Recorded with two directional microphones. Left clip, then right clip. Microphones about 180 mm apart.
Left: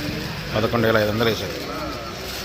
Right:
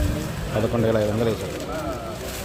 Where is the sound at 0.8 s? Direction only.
Centre (ahead or behind).